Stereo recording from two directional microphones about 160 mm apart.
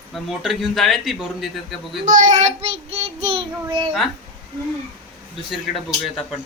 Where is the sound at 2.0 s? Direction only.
50° right (ahead or behind); by 3.9 s 35° right (ahead or behind).